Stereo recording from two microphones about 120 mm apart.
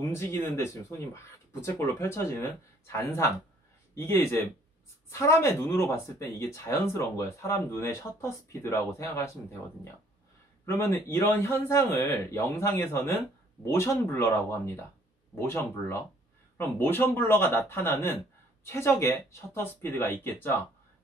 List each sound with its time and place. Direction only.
0.1 s speech: 20° left (ahead or behind)
10.6 s speech: 20° left (ahead or behind)